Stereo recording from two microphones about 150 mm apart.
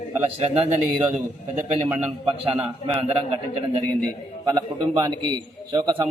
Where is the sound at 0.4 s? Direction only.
45° right (ahead or behind).